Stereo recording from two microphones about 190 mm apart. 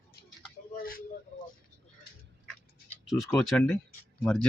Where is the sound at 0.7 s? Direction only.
50° left (ahead or behind).